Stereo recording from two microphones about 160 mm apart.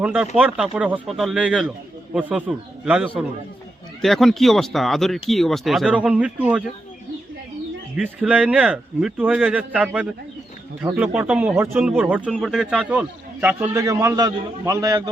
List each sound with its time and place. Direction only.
0.0 s a man's voice: 10° right (ahead or behind)
7.9 s a man's voice: 5° right (ahead or behind)